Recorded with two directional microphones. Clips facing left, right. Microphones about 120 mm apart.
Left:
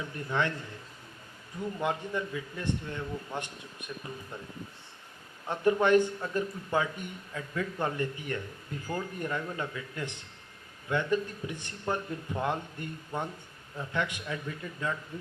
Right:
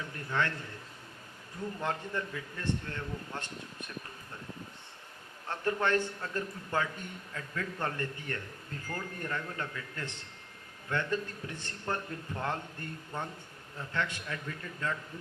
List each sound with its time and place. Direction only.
0.3 s a man's voice: 15° left (ahead or behind)
1.8 s a man's voice: 15° left (ahead or behind)
5.5 s a man's voice: 15° left (ahead or behind)